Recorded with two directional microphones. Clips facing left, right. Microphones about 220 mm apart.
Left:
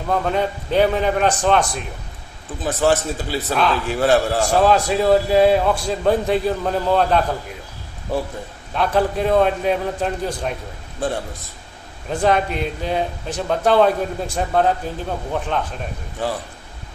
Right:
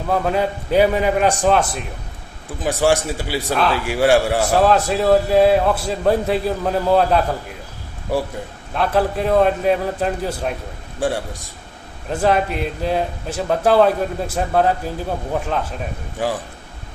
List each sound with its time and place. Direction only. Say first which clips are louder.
0.1 s a man's voice: right 1 dB; 5° right (ahead or behind)
8.7 s a man's voice: even; centre (ahead or behind)